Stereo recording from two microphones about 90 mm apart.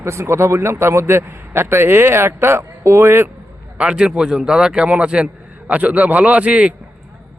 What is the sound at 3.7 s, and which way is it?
A man's voice, 10° right (ahead or behind).